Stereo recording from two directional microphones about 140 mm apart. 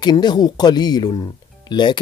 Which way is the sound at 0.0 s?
30° left (ahead or behind).